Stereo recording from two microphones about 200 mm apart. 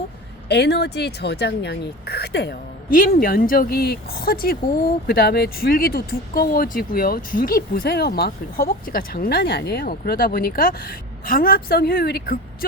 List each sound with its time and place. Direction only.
0.4 s speech: 55° left (ahead or behind)